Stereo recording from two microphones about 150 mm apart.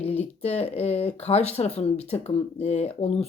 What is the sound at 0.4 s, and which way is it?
Speech, 45° left (ahead or behind).